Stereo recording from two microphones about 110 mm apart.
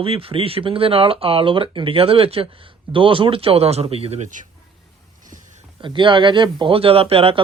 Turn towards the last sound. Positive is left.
turn(degrees=-60)  # may be behind; listen again after turning